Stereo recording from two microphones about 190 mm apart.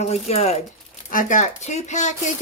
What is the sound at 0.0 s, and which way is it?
Speech, 35° left (ahead or behind).